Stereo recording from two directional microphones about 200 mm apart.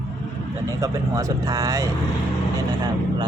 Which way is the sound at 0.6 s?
15° right (ahead or behind).